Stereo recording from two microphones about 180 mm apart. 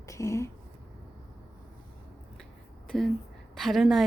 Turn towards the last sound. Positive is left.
turn(degrees=0)  # may be behind; listen again after turning